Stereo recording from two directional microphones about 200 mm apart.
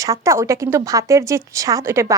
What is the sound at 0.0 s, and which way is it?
A woman's voice, 15° right (ahead or behind).